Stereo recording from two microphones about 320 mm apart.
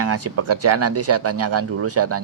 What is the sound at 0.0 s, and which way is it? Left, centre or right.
Speech, right.